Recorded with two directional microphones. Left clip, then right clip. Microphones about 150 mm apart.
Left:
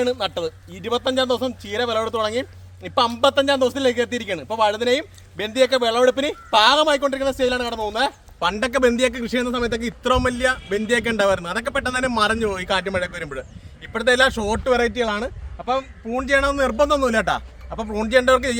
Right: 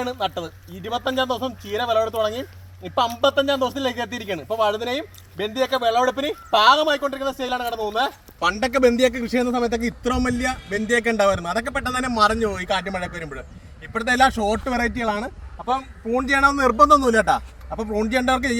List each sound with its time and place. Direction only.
0.0 s speech: 30° left (ahead or behind)
16.7 s speech: centre (ahead or behind)
17.7 s speech: 15° left (ahead or behind)